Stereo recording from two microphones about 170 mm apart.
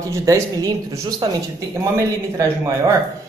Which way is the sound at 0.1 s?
20° right (ahead or behind).